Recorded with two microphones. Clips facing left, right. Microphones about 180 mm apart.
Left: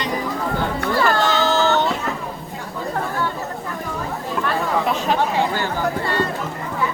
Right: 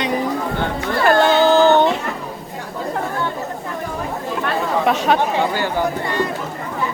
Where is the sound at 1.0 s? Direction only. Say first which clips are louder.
Right 8 dB; 55° right (ahead or behind).